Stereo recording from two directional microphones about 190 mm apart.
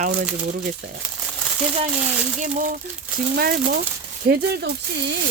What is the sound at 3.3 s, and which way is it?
Speech, 55° right (ahead or behind).